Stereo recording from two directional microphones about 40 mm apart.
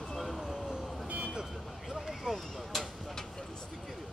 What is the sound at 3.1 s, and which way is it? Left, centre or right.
Vehicle, centre.